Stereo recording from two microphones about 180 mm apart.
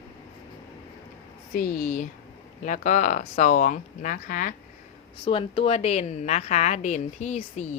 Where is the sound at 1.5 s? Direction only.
50° left (ahead or behind).